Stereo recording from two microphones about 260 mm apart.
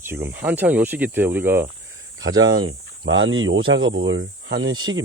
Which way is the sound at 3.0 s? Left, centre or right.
Right.